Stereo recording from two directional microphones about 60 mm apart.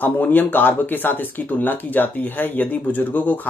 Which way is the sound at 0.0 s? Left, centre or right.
Left.